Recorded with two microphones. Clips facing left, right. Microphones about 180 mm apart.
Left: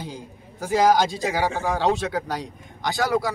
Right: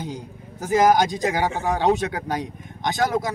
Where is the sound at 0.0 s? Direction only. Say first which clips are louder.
Right 3 dB; 20° right (ahead or behind).